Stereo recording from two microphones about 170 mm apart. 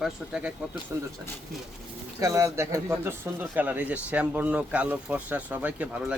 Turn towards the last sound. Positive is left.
turn(degrees=-10)  # may be behind; listen again after turning